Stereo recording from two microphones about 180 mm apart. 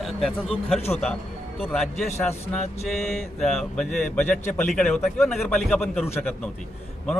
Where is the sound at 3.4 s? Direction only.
Centre (ahead or behind).